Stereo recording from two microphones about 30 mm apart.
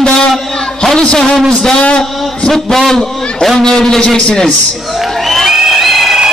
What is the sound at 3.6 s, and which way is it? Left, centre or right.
Speech, centre.